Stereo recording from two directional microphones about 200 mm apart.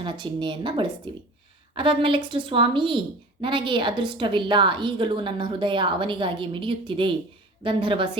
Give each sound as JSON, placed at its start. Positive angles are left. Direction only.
{"t": 0.0, "sound": "a woman's voice", "side_deg": -25}